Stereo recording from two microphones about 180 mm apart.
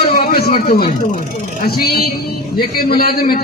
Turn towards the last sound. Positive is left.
turn(degrees=55)  # may be behind; listen again after turning